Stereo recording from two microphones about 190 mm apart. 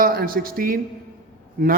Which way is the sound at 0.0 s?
50° right (ahead or behind).